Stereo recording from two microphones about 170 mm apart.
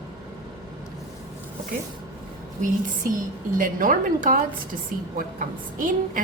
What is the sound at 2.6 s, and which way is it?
A woman's voice, 50° right (ahead or behind).